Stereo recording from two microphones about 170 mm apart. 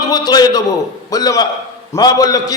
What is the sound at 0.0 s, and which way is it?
A man's voice, 25° left (ahead or behind).